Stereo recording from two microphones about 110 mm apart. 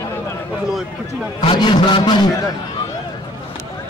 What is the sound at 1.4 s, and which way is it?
Speech, 50° left (ahead or behind).